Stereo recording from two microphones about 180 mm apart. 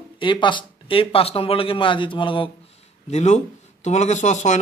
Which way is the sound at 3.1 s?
40° left (ahead or behind).